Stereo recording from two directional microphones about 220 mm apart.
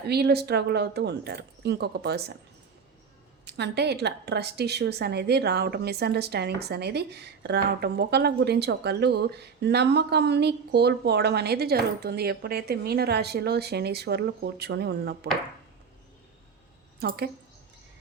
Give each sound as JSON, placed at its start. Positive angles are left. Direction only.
{"t": 0.1, "sound": "a woman's voice", "side_deg": -45}
{"t": 3.4, "sound": "a woman's voice", "side_deg": -50}
{"t": 17.0, "sound": "speech", "side_deg": -45}